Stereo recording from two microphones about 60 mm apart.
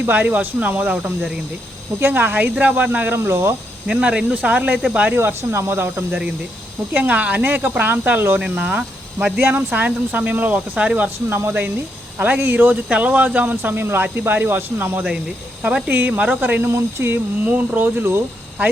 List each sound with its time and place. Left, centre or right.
0.0 s speech: right
2.0 s speech: right
3.2 s speech: right
3.8 s speech: centre
5.1 s speech: right
6.9 s speech: right
12.2 s speech: right
17.4 s speech: right
17.7 s speech: right